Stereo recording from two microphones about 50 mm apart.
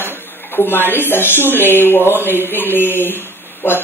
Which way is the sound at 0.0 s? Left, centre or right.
Left.